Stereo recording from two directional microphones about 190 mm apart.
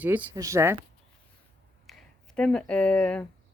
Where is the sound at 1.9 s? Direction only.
5° left (ahead or behind).